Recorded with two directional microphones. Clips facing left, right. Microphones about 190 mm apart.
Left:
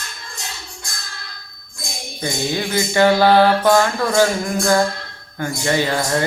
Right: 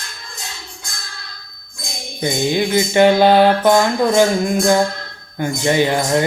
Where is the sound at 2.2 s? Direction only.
20° right (ahead or behind).